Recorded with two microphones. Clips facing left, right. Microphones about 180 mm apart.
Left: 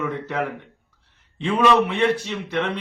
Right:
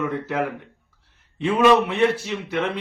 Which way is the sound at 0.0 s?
5° right (ahead or behind).